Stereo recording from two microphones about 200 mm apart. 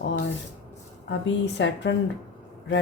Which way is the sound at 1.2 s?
65° left (ahead or behind).